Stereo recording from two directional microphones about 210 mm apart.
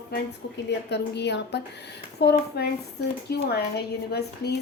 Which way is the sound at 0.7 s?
55° left (ahead or behind).